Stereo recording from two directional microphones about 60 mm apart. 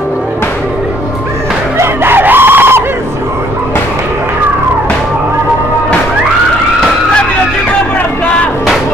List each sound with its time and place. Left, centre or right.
1.8 s screaming: right